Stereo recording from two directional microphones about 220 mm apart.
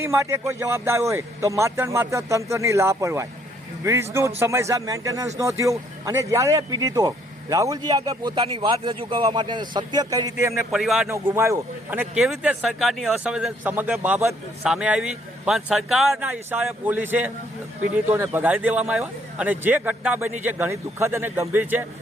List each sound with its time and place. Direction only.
0.0 s a man's voice: 10° right (ahead or behind)
10.5 s speech: centre (ahead or behind)
11.1 s a man's voice: 10° right (ahead or behind)